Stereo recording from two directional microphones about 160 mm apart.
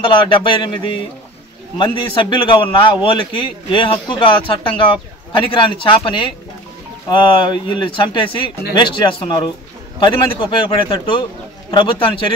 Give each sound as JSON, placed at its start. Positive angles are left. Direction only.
{"t": 0.0, "sound": "a man's voice", "side_deg": 30}
{"t": 1.8, "sound": "a man's voice", "side_deg": 30}